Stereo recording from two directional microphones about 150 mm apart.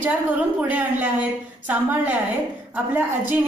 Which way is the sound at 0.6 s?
10° right (ahead or behind).